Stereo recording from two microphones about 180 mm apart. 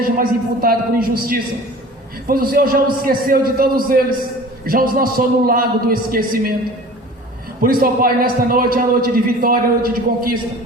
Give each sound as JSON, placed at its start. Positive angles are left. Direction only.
{"t": 0.0, "sound": "a man's voice", "side_deg": -55}
{"t": 7.6, "sound": "a man's voice", "side_deg": -55}